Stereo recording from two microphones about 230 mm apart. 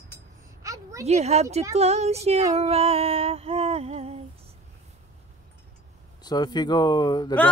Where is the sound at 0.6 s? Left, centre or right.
Centre.